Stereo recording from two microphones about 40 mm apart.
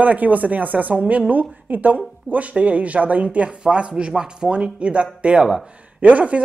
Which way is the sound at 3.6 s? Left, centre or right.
Right.